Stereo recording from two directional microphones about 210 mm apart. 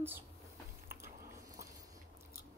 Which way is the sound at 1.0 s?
15° right (ahead or behind).